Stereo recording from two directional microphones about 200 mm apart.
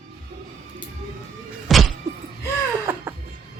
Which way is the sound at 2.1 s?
15° right (ahead or behind).